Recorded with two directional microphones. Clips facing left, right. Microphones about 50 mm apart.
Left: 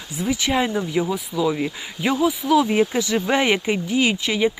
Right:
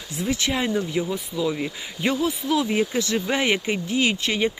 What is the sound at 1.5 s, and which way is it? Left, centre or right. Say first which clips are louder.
Speech: left 3 dB; centre.